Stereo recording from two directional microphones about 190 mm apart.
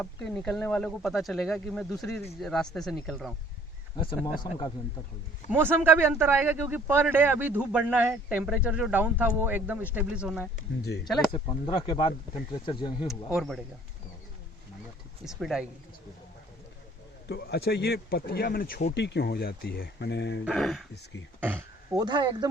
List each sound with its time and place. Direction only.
0.0 s speech: centre (ahead or behind)
3.9 s speech: 25° left (ahead or behind)
5.5 s speech: 10° right (ahead or behind)
11.3 s speech: 25° left (ahead or behind)
13.3 s speech: centre (ahead or behind)
15.2 s speech: centre (ahead or behind)
17.2 s speech: 60° left (ahead or behind)
20.4 s speech: centre (ahead or behind)
20.9 s speech: 70° left (ahead or behind)
21.4 s a sound: 10° right (ahead or behind)
21.9 s speech: 25° right (ahead or behind)